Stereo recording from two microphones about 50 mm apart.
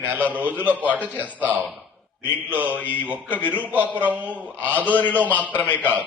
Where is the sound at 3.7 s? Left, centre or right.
Right.